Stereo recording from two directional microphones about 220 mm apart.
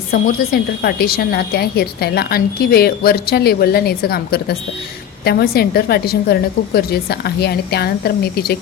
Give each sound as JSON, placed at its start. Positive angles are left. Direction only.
{"t": 0.1, "sound": "speech", "side_deg": 45}